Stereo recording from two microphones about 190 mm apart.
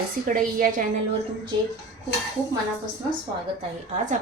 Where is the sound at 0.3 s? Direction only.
45° right (ahead or behind).